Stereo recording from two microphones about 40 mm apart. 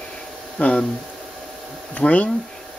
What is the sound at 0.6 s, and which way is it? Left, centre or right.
Speech, left.